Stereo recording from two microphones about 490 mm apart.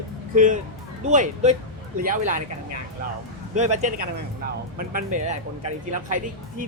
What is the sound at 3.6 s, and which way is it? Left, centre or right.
A man's voice, centre.